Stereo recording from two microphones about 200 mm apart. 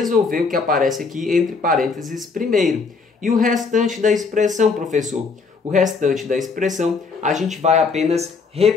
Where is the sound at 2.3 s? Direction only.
45° right (ahead or behind).